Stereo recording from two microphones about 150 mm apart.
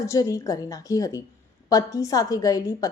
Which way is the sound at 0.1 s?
20° left (ahead or behind).